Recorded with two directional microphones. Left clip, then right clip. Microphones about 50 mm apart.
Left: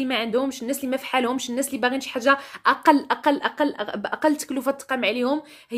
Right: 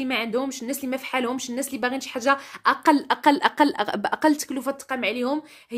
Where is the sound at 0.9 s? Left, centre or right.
Centre.